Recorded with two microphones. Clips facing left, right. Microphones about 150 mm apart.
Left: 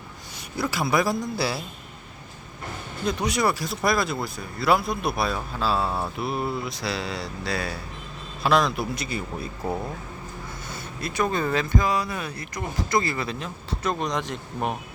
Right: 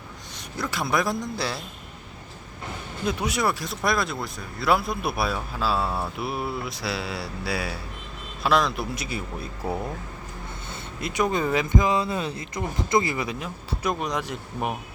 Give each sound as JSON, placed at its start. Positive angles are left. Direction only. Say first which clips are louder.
{"t": 0.6, "sound": "speech", "louder": "left 2 dB", "side_deg": 5}
{"t": 3.1, "sound": "speech", "louder": "left 1 dB", "side_deg": -5}
{"t": 10.7, "sound": "speech", "louder": "right 1 dB", "side_deg": -20}